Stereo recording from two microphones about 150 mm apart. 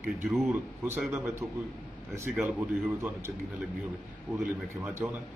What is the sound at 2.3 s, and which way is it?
Speech, 10° right (ahead or behind).